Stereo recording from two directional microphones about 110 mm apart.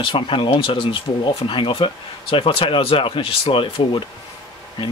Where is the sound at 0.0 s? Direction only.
50° left (ahead or behind).